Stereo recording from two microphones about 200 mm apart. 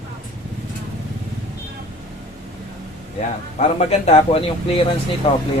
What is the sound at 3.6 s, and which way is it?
A man's voice, 35° left (ahead or behind).